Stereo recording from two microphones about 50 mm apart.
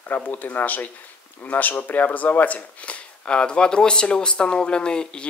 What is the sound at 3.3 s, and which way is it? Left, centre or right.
Speech, centre.